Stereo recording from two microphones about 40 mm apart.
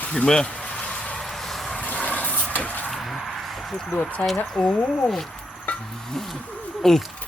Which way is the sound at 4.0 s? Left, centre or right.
Left.